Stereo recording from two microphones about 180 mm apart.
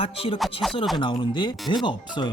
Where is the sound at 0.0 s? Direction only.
30° left (ahead or behind).